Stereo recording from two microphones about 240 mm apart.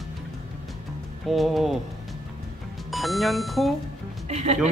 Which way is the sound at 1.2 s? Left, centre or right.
Centre.